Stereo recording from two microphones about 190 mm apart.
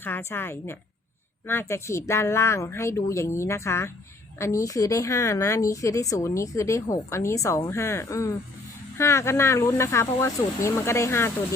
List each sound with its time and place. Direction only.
0.0 s speech: 10° left (ahead or behind)